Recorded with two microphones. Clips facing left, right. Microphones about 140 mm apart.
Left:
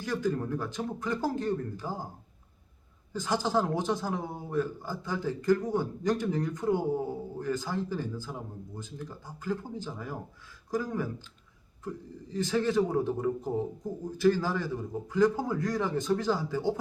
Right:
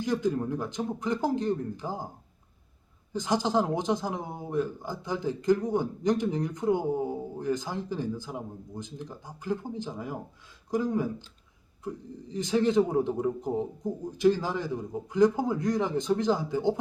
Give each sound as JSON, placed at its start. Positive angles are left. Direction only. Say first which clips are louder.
{"t": 0.0, "sound": "speech", "louder": "right 3 dB", "side_deg": -20}
{"t": 3.1, "sound": "speech", "louder": "right 2 dB", "side_deg": -20}
{"t": 12.3, "sound": "speech", "louder": "right 3 dB", "side_deg": -20}